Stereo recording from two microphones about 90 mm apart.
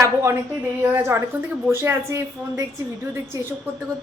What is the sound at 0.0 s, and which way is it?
A woman's voice, 30° right (ahead or behind).